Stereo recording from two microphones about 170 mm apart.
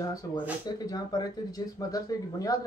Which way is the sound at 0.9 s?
20° left (ahead or behind).